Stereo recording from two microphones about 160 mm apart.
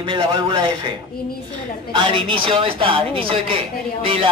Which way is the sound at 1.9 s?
30° right (ahead or behind).